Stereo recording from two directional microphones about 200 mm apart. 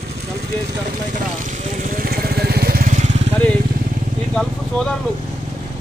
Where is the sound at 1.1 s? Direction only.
40° right (ahead or behind).